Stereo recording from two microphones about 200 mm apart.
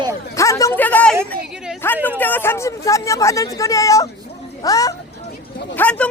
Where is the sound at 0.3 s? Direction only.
15° left (ahead or behind).